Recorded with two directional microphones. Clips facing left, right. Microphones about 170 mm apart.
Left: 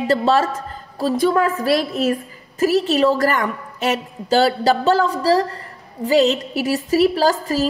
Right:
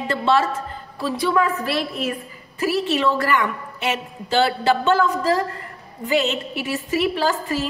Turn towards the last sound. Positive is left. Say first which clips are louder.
# left 4 dB
turn(degrees=40)  # may be behind; listen again after turning